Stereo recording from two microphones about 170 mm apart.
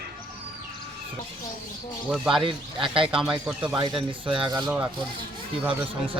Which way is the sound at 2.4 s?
30° right (ahead or behind).